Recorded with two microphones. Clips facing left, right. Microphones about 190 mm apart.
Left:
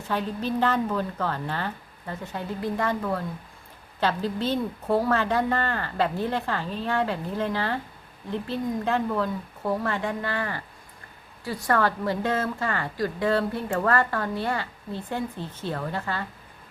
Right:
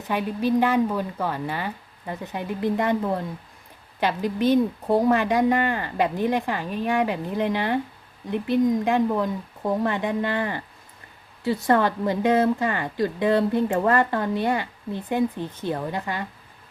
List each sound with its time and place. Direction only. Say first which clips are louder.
0.1 s a woman's voice: right 5 dB; 10° right (ahead or behind)